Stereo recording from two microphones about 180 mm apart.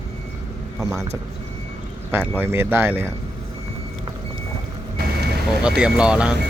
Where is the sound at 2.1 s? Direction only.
10° right (ahead or behind).